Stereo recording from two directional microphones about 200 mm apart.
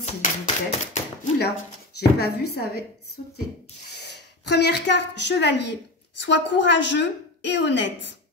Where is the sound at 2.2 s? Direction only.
55° left (ahead or behind).